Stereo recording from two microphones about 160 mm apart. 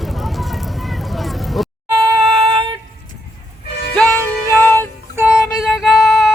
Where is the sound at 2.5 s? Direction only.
35° right (ahead or behind).